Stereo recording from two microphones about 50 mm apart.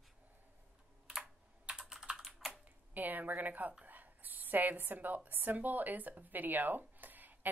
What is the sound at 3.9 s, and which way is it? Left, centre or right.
A woman's voice, right.